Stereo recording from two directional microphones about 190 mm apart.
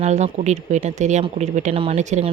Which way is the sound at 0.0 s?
35° right (ahead or behind).